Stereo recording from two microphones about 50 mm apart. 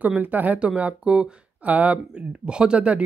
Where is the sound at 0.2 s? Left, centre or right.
Right.